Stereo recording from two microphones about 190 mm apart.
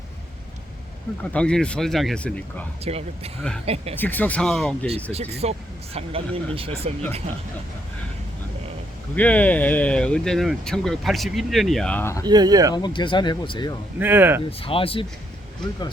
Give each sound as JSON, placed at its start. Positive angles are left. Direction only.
{"t": 1.2, "sound": "speech", "side_deg": 5}
{"t": 2.8, "sound": "speech", "side_deg": -30}
{"t": 3.9, "sound": "speech", "side_deg": 10}
{"t": 5.1, "sound": "speech", "side_deg": -35}
{"t": 9.1, "sound": "speech", "side_deg": 10}
{"t": 12.2, "sound": "speech", "side_deg": -20}
{"t": 12.7, "sound": "speech", "side_deg": 25}
{"t": 14.0, "sound": "speech", "side_deg": -10}
{"t": 14.6, "sound": "speech", "side_deg": 30}